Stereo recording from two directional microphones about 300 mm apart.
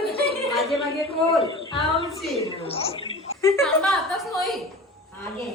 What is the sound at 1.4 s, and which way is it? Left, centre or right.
A woman's voice, centre.